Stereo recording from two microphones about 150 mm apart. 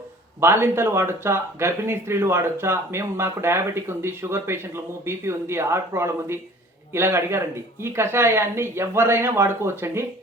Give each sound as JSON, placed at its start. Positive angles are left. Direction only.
{"t": 0.3, "sound": "speech", "side_deg": -15}